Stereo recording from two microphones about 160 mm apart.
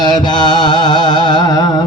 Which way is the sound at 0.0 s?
25° left (ahead or behind).